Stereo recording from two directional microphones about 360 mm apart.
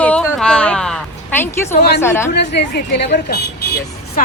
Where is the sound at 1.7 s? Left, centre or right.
Left.